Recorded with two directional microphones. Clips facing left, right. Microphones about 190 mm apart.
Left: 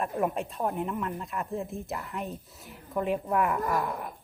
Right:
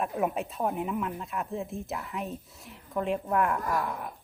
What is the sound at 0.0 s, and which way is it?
Speech, centre (ahead or behind).